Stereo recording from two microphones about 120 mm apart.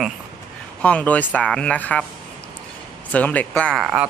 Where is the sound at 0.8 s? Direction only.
10° left (ahead or behind).